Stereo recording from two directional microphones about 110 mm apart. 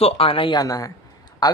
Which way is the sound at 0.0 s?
60° left (ahead or behind).